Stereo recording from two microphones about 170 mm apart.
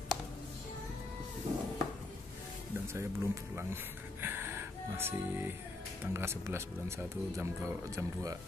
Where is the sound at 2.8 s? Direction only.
15° right (ahead or behind).